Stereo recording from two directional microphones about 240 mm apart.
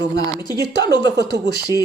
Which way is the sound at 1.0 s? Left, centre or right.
Right.